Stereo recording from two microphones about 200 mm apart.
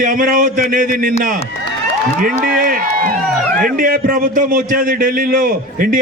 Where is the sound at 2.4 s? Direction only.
45° right (ahead or behind).